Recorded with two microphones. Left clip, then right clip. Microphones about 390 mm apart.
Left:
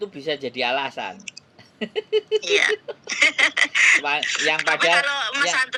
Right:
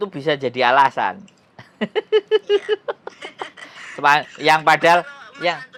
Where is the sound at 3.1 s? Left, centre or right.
Left.